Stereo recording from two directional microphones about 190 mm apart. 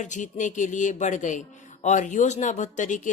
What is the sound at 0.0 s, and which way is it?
A woman's voice, 40° left (ahead or behind).